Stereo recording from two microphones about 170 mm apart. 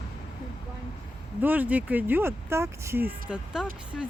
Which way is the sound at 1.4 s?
10° right (ahead or behind).